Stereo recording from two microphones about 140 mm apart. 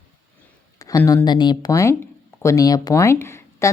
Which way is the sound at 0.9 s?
25° left (ahead or behind).